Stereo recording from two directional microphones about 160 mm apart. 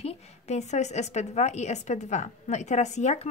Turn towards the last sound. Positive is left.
turn(degrees=45)  # may be behind; listen again after turning